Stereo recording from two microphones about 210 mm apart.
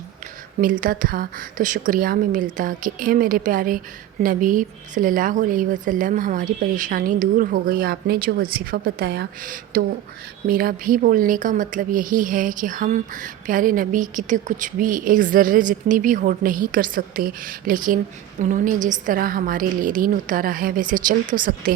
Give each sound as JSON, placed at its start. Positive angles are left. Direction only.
{"t": 0.6, "sound": "speech", "side_deg": -40}